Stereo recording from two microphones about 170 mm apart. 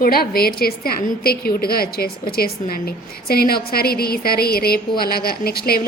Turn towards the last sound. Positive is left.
turn(degrees=65)  # may be behind; listen again after turning